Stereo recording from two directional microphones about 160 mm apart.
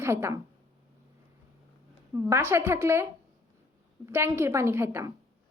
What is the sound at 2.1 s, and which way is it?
Speech, 15° right (ahead or behind).